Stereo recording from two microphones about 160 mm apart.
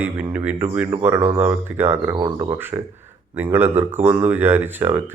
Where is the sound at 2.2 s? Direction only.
25° right (ahead or behind).